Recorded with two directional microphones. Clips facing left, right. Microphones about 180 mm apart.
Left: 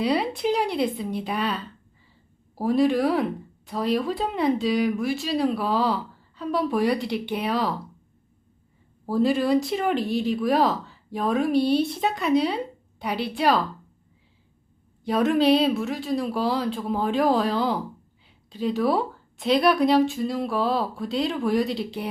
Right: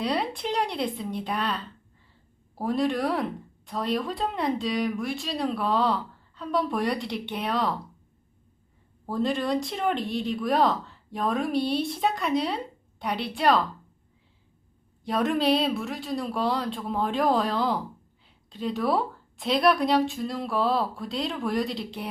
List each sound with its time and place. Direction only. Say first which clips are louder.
0.0 s speech: left 5 dB; centre (ahead or behind)
9.0 s speech: left 5 dB; 5° left (ahead or behind)
15.0 s speech: left 4 dB; centre (ahead or behind)